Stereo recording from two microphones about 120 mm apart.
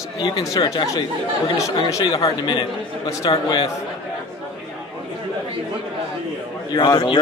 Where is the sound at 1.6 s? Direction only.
25° left (ahead or behind).